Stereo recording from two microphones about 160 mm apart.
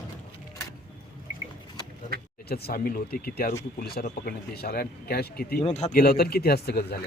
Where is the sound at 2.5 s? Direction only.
70° left (ahead or behind).